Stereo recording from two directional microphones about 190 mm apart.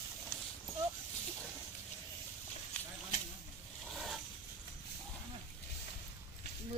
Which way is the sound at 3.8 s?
Centre (ahead or behind).